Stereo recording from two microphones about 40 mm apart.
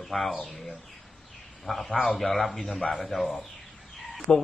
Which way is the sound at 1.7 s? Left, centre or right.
Centre.